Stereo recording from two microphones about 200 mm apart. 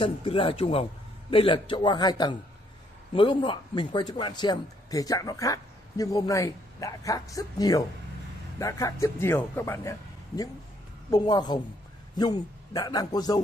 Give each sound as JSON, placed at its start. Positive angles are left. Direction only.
{"t": 0.0, "sound": "a man's voice", "side_deg": 25}